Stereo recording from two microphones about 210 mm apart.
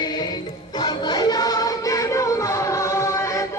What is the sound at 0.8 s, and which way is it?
Music, 20° left (ahead or behind).